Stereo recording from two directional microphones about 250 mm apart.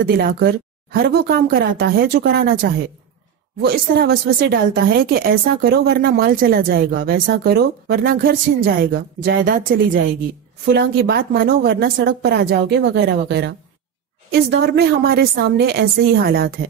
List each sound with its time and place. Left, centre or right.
0.0 s speech: right